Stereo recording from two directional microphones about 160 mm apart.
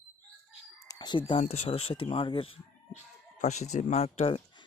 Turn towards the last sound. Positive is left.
turn(degrees=40)  # may be behind; listen again after turning